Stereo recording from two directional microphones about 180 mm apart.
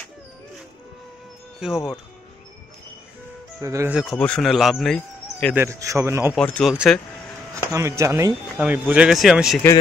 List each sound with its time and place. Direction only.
1.6 s speech: 5° right (ahead or behind)
3.6 s speech: 15° right (ahead or behind)
3.9 s speech: centre (ahead or behind)
5.5 s speech: 15° right (ahead or behind)
6.3 s speech: 5° left (ahead or behind)
7.7 s speech: 15° right (ahead or behind)